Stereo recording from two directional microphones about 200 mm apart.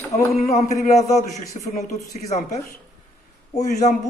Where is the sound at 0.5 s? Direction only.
35° left (ahead or behind).